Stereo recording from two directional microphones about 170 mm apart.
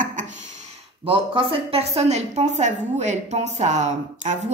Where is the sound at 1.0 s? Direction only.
30° right (ahead or behind).